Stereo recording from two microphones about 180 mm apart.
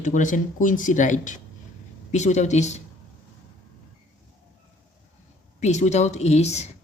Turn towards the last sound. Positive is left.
turn(degrees=40)  # may be behind; listen again after turning